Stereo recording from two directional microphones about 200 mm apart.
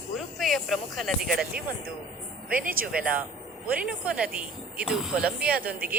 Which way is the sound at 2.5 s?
45° right (ahead or behind).